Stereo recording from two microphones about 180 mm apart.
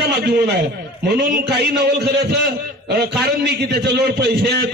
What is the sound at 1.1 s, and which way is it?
A man's voice, 65° right (ahead or behind).